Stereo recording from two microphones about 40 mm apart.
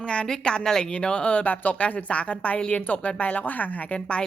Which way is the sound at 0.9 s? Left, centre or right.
Left.